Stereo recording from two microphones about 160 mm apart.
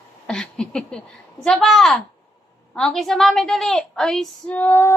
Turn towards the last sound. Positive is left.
turn(degrees=15)  # may be behind; listen again after turning